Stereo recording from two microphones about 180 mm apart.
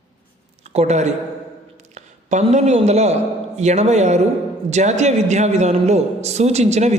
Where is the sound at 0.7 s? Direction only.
35° right (ahead or behind).